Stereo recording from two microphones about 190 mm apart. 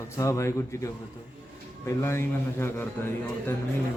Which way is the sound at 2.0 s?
15° left (ahead or behind).